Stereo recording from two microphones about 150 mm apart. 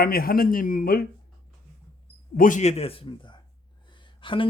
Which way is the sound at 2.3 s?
60° left (ahead or behind).